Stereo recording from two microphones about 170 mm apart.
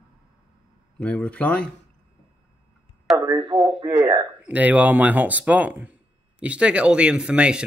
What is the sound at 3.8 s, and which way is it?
Speech, 15° right (ahead or behind).